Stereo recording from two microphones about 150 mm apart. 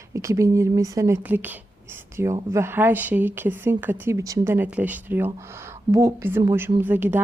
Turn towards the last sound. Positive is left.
turn(degrees=-15)  # may be behind; listen again after turning